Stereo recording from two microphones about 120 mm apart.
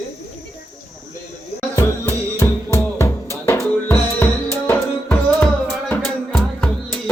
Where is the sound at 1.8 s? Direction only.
30° left (ahead or behind).